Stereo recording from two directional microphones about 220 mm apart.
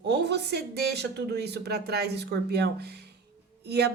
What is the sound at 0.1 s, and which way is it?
Speech, 50° right (ahead or behind).